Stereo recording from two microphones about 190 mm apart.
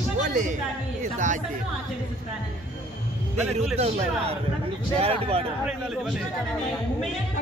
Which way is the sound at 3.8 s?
35° right (ahead or behind).